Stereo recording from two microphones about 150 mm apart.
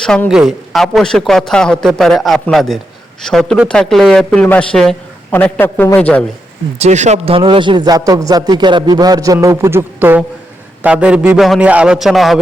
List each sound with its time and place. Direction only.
0.0 s a man's voice: 5° left (ahead or behind)
6.7 s a man's voice: 50° right (ahead or behind); by 12.4 s centre (ahead or behind)